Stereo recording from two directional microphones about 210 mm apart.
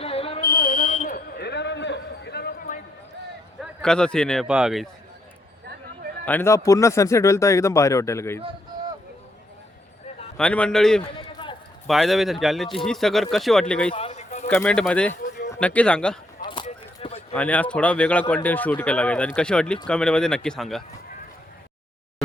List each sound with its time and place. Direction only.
0.0 s fire alarm: 25° left (ahead or behind)
0.4 s a sound: 40° left (ahead or behind)
3.6 s speech: 5° left (ahead or behind)
6.2 s speech: 10° left (ahead or behind)
10.3 s speech: 5° left (ahead or behind)
11.0 s run: 20° left (ahead or behind)
11.9 s speech: centre (ahead or behind)
13.9 s a sound: 30° left (ahead or behind)
14.4 s speech: 10° left (ahead or behind)
15.2 s a sound: 50° left (ahead or behind)
15.6 s speech: 5° left (ahead or behind)
16.4 s a sound: 20° left (ahead or behind)
17.3 s speech: 5° left (ahead or behind)